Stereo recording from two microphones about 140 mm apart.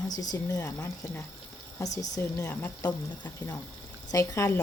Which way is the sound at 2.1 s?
20° left (ahead or behind).